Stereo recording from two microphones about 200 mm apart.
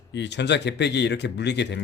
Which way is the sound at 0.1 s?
60° left (ahead or behind).